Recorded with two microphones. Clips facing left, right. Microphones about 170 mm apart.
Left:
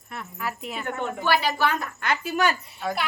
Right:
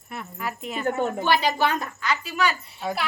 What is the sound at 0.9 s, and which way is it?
Speech, 35° right (ahead or behind).